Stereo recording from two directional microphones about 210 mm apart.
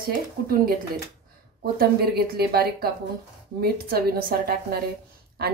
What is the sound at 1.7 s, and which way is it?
A woman's voice, 50° right (ahead or behind).